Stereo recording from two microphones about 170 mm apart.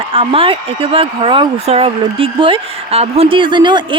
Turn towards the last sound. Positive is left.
turn(degrees=-25)  # may be behind; listen again after turning